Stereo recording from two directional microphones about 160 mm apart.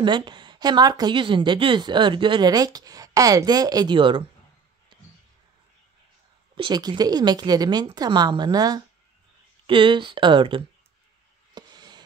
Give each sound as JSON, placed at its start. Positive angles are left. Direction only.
{"t": 0.0, "sound": "a woman's voice", "side_deg": -30}
{"t": 6.5, "sound": "a woman's voice", "side_deg": -30}
{"t": 11.5, "sound": "a sound", "side_deg": -25}